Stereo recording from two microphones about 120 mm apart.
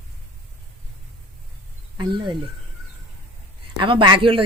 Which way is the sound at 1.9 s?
40° right (ahead or behind).